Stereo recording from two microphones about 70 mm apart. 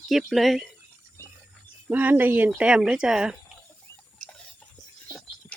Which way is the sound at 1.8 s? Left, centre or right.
Right.